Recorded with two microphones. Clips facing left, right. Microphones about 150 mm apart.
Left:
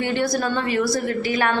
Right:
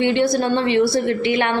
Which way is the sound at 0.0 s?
20° right (ahead or behind).